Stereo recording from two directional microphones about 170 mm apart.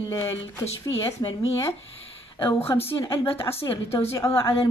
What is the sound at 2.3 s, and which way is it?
Speech, 30° left (ahead or behind).